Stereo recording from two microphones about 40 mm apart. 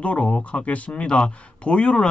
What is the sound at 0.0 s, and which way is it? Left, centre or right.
A man's voice, left.